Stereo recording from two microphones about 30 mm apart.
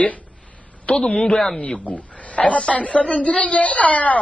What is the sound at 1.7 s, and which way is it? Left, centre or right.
Speech, left.